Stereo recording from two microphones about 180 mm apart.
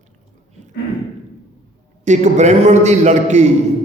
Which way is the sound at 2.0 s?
40° right (ahead or behind).